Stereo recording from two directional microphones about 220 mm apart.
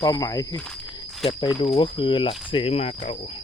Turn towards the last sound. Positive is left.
turn(degrees=25)  # may be behind; listen again after turning